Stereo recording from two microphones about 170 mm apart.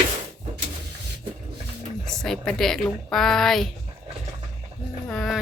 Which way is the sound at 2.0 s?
Centre (ahead or behind).